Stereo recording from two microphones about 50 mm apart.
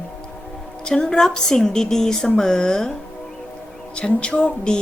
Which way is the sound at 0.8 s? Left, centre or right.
Centre.